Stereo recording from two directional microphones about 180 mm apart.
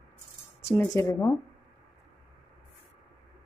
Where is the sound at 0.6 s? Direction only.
15° left (ahead or behind).